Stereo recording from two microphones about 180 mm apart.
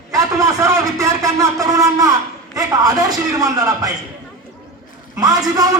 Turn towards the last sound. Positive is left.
turn(degrees=-20)  # may be behind; listen again after turning